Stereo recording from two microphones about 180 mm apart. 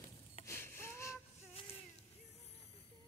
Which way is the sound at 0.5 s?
15° left (ahead or behind).